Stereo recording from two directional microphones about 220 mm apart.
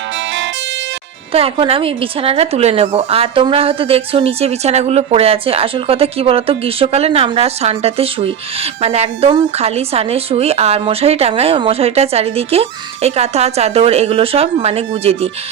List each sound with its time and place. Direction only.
1.3 s speech: 25° right (ahead or behind)